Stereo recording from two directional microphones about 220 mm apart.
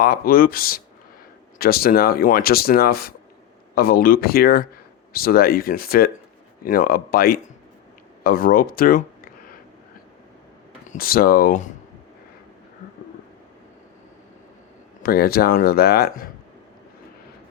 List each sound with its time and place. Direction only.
0.0 s speech: 40° left (ahead or behind)
10.8 s speech: 40° left (ahead or behind)
15.0 s speech: 45° left (ahead or behind)